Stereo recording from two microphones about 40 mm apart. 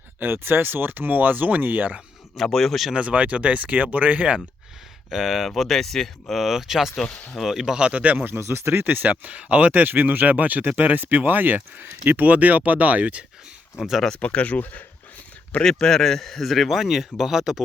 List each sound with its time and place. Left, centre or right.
0.2 s speech: right
2.3 s speech: centre
2.9 s speech: right
5.1 s speech: centre
6.5 s speech: centre
7.0 s speech: left
7.4 s speech: centre
7.8 s speech: right
8.3 s speech: right
8.8 s speech: right
13.7 s speech: centre
14.2 s speech: left
14.6 s speech: left
15.6 s speech: centre